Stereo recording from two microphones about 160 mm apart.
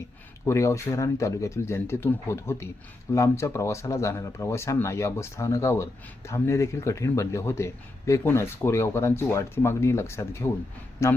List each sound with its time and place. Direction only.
0.4 s speech: 15° left (ahead or behind)